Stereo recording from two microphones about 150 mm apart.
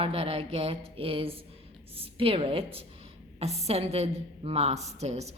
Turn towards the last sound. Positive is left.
turn(degrees=-45)  # may be behind; listen again after turning